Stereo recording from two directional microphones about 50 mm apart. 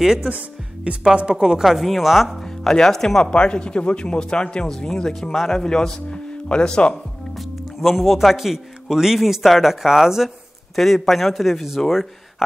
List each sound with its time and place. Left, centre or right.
0.0 s speech: centre
0.9 s a woman's voice: right
1.6 s speech: centre
2.6 s a man's voice: centre
3.3 s a man's voice: centre
7.3 s speech: centre